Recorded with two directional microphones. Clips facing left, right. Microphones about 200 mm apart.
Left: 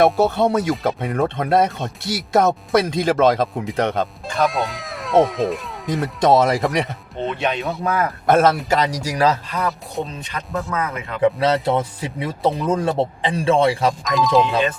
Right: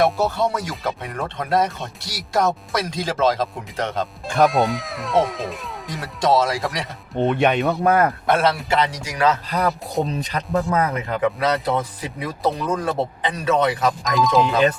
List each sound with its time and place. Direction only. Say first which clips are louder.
0.0 s speech: left 4 dB; 55° left (ahead or behind)
4.4 s speech: right 4 dB; centre (ahead or behind)
5.9 s speech: left 4 dB; 55° left (ahead or behind)
7.3 s speech: right 4 dB; 55° right (ahead or behind)
8.3 s a man's voice: left 9 dB; 45° left (ahead or behind)
9.5 s speech: right 2 dB; 35° right (ahead or behind)
11.2 s speech: left 5 dB; 30° left (ahead or behind)
14.0 s speech: left 1 dB; centre (ahead or behind)